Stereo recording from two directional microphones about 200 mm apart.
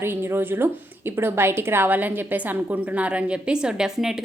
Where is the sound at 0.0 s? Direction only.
10° right (ahead or behind).